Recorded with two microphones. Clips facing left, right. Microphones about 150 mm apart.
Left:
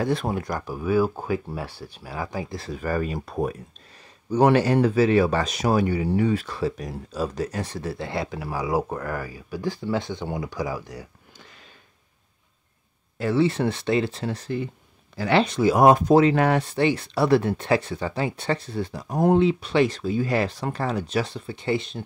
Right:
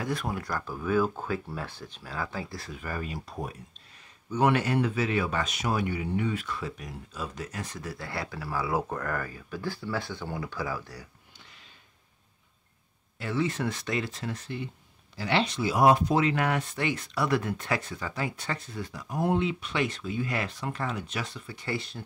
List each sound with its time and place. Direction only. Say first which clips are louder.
0.0 s speech: left 7 dB; 30° left (ahead or behind)
2.6 s speech: left 9 dB; 40° left (ahead or behind); by 3.5 s 55° left (ahead or behind)
4.3 s speech: left 7 dB; 35° left (ahead or behind); by 11.1 s 20° left (ahead or behind)
13.2 s speech: left 8 dB; 30° left (ahead or behind)
15.1 s speech: left 7 dB; 50° left (ahead or behind); by 22.0 s 20° left (ahead or behind)